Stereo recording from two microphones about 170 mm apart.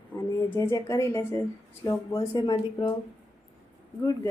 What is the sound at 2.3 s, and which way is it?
Speech, 30° left (ahead or behind).